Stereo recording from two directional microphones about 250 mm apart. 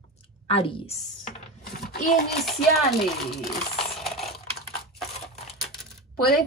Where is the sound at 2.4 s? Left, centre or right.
Centre.